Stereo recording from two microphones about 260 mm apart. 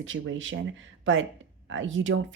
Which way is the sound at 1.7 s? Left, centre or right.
Right.